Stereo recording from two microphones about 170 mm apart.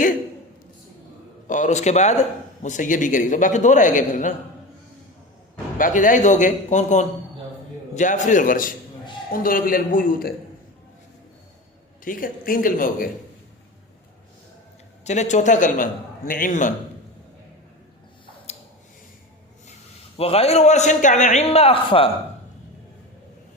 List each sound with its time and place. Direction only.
1.5 s a man's voice: 45° left (ahead or behind)
5.7 s a man's voice: 50° left (ahead or behind)
12.0 s a man's voice: 55° left (ahead or behind)
15.0 s a man's voice: 40° left (ahead or behind)
20.1 s a man's voice: 35° left (ahead or behind)